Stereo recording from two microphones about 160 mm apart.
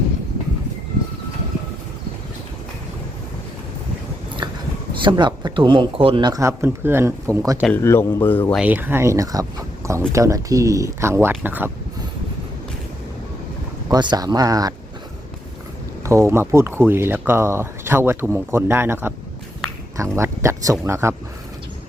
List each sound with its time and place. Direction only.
4.4 s a sound: 30° right (ahead or behind)
5.0 s speech: 30° right (ahead or behind)
7.8 s speech: 15° left (ahead or behind)
8.5 s speech: 10° right (ahead or behind)
13.9 s speech: 25° right (ahead or behind)
16.0 s speech: 15° right (ahead or behind)